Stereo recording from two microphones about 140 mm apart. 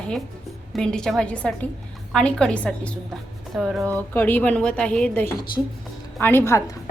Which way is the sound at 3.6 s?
Centre (ahead or behind).